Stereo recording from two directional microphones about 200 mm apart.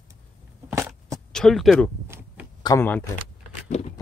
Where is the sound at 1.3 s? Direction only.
5° left (ahead or behind).